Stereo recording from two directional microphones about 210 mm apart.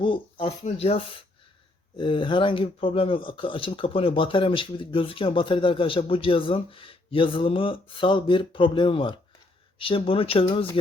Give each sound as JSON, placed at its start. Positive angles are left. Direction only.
{"t": 0.0, "sound": "speech", "side_deg": 25}